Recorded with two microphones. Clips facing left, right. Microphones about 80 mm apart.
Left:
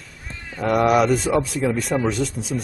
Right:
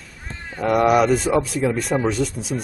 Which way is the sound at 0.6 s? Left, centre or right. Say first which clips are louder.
Right 1 dB; centre.